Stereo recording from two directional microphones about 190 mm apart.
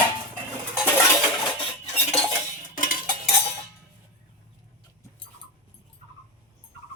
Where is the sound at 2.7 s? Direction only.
45° left (ahead or behind).